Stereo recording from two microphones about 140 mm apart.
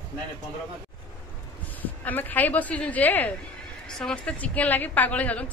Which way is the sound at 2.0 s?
10° left (ahead or behind).